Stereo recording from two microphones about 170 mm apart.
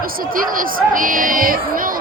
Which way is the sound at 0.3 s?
55° right (ahead or behind).